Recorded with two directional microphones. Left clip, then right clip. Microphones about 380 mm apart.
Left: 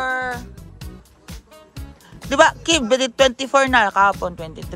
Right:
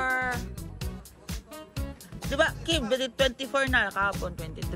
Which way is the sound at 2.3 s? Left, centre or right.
Centre.